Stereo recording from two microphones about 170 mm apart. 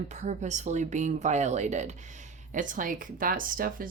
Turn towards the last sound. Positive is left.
turn(degrees=-55)  # may be behind; listen again after turning